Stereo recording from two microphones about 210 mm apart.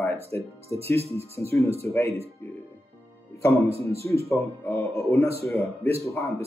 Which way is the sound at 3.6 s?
30° right (ahead or behind).